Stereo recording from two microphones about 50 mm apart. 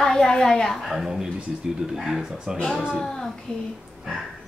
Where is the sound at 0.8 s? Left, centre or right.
Centre.